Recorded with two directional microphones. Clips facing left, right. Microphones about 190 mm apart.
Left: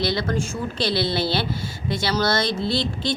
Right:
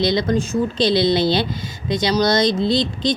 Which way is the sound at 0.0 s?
20° right (ahead or behind).